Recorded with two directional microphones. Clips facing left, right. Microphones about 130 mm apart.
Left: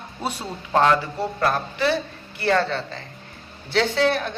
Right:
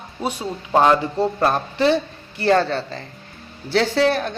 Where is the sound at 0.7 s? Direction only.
15° right (ahead or behind).